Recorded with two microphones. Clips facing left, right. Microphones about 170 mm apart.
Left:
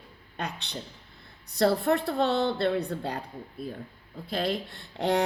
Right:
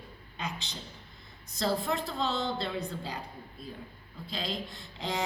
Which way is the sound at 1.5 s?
60° left (ahead or behind).